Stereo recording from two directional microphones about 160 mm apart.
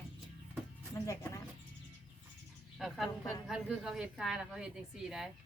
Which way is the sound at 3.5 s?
5° right (ahead or behind).